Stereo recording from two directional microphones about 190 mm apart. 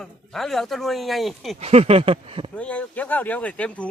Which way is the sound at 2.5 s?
5° left (ahead or behind).